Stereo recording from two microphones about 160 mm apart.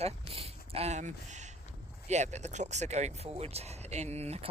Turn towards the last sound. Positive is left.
turn(degrees=-40)  # may be behind; listen again after turning